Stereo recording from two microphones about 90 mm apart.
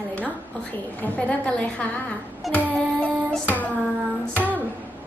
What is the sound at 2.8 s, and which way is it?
Music, 10° left (ahead or behind).